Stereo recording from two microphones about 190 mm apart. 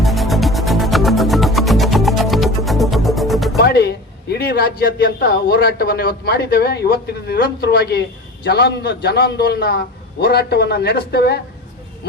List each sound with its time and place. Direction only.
0.0 s music: centre (ahead or behind)
3.6 s a man's voice: 60° left (ahead or behind)